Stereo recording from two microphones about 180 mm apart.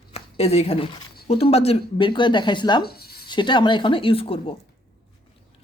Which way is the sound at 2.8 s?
60° left (ahead or behind).